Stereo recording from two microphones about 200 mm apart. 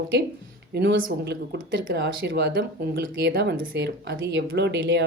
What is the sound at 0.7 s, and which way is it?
Speech, 60° right (ahead or behind).